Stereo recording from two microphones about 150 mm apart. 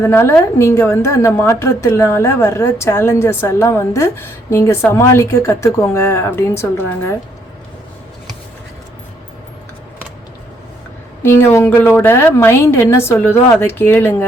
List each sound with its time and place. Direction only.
0.0 s a woman's voice: 15° left (ahead or behind)
11.2 s a woman's voice: 15° left (ahead or behind)